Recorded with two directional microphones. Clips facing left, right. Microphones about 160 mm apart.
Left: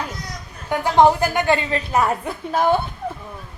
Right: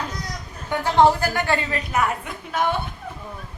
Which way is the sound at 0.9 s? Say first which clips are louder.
Left 2 dB; 15° left (ahead or behind).